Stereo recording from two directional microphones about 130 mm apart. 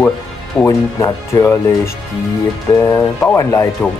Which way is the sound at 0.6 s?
25° left (ahead or behind).